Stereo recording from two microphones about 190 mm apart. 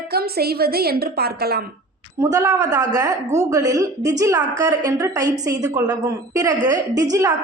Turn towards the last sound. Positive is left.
turn(degrees=-20)  # may be behind; listen again after turning